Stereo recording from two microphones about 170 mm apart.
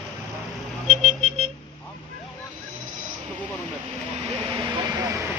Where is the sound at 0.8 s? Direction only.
40° right (ahead or behind).